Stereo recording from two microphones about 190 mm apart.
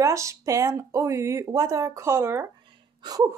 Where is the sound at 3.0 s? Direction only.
20° right (ahead or behind).